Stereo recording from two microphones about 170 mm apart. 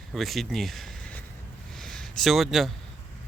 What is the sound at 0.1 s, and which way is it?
Speech, centre (ahead or behind).